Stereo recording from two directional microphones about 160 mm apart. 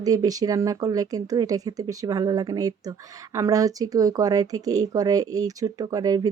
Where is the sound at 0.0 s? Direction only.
20° right (ahead or behind).